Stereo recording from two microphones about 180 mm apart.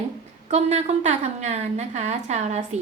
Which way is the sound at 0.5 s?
35° right (ahead or behind).